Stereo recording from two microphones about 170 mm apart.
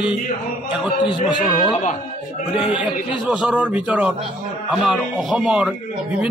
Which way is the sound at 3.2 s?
5° right (ahead or behind).